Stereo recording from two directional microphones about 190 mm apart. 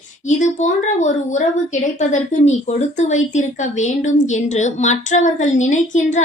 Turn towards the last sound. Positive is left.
turn(degrees=40)  # may be behind; listen again after turning